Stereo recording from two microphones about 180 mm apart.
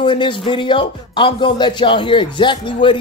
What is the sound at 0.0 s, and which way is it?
Speech, 25° left (ahead or behind).